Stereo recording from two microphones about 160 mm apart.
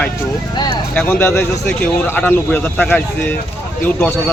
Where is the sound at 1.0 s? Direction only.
15° left (ahead or behind).